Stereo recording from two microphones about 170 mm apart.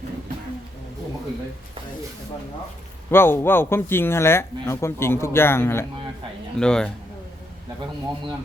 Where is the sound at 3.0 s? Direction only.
15° left (ahead or behind).